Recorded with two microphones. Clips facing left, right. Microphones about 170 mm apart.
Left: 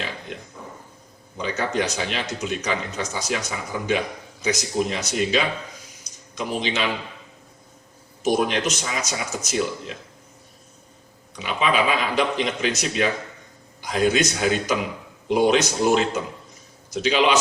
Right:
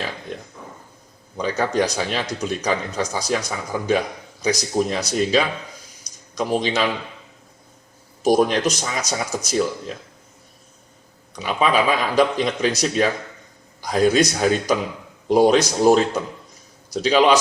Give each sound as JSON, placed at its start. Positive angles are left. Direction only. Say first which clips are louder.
{"t": 1.4, "sound": "a man's voice", "louder": "right 4 dB", "side_deg": -35}
{"t": 4.4, "sound": "a man's voice", "louder": "right 3 dB", "side_deg": -35}
{"t": 6.1, "sound": "a sound", "louder": "right 6 dB", "side_deg": -35}
{"t": 8.2, "sound": "a man's voice", "louder": "right 4 dB", "side_deg": -35}
{"t": 11.3, "sound": "a man's voice", "louder": "right 3 dB", "side_deg": -40}